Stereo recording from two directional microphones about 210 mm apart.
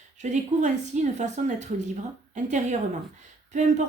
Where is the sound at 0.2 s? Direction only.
35° right (ahead or behind).